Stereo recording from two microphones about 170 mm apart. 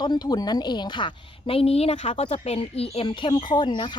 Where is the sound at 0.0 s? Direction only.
25° left (ahead or behind).